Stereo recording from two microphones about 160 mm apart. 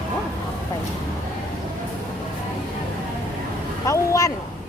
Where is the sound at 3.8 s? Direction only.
20° left (ahead or behind).